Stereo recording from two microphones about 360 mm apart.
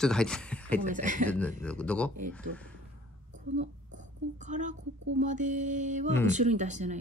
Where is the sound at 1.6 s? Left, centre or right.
Centre.